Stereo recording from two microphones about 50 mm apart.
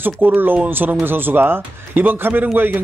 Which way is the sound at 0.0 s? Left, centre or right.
Right.